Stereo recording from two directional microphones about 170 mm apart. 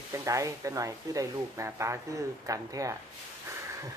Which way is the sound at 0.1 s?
20° right (ahead or behind).